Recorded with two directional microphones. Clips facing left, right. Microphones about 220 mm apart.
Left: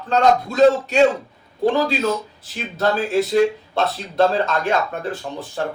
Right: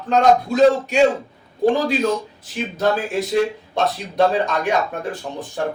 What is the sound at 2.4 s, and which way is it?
A man's voice, 15° right (ahead or behind).